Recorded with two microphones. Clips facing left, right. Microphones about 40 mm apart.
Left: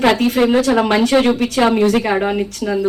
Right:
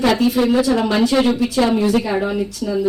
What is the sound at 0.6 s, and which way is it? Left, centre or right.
A woman's voice, left.